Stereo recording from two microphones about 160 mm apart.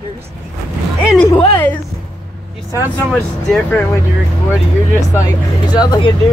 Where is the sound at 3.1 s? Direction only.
10° left (ahead or behind).